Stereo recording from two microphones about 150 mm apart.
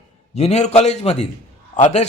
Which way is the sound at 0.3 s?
45° left (ahead or behind).